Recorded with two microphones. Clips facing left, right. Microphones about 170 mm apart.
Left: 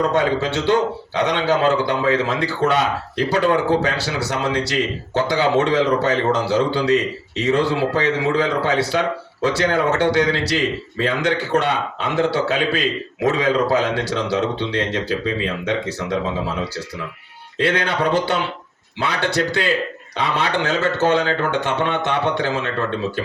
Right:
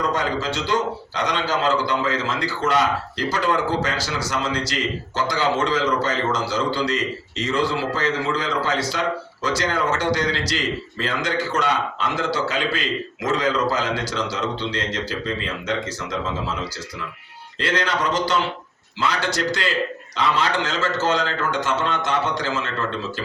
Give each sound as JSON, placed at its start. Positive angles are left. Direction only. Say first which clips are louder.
{"t": 0.1, "sound": "a man's voice", "louder": "left 5 dB", "side_deg": 65}
{"t": 17.6, "sound": "a man's voice", "louder": "left 4 dB", "side_deg": 65}